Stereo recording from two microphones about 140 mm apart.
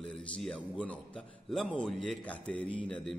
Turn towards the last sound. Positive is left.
turn(degrees=5)  # may be behind; listen again after turning